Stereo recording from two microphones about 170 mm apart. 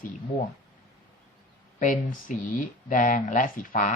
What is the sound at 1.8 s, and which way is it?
Speech, 50° left (ahead or behind).